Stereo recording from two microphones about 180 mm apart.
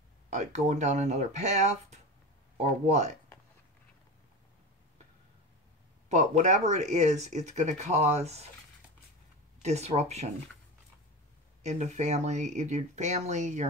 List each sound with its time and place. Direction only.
0.3 s speech: 40° right (ahead or behind)
6.0 s speech: 40° right (ahead or behind)
9.6 s speech: 40° right (ahead or behind)
11.6 s speech: 40° right (ahead or behind)